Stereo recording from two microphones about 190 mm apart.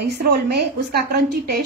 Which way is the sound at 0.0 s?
60° right (ahead or behind).